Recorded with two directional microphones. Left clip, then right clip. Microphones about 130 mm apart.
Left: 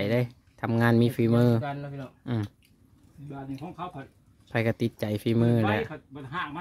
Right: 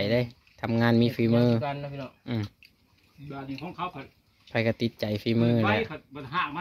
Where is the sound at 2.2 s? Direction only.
40° left (ahead or behind).